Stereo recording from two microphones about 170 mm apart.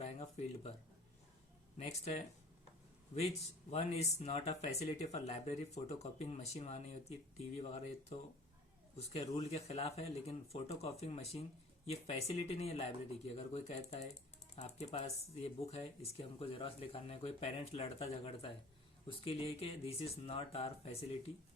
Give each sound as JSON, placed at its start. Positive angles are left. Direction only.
{"t": 0.0, "sound": "a sound", "side_deg": 40}
{"t": 1.8, "sound": "speech", "side_deg": 40}
{"t": 9.4, "sound": "speech", "side_deg": 35}